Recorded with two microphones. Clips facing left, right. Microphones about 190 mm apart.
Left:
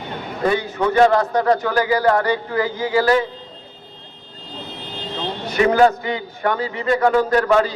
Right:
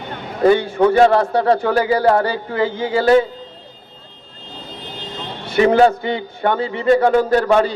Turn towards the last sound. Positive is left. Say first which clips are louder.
# right 2 dB
turn(degrees=-30)  # may be behind; listen again after turning